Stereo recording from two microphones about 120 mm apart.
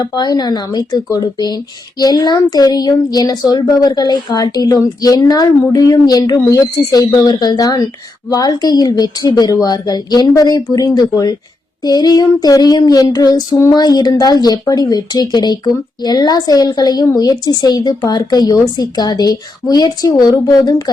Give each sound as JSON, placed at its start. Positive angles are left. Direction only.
{"t": 0.0, "sound": "speech", "side_deg": 30}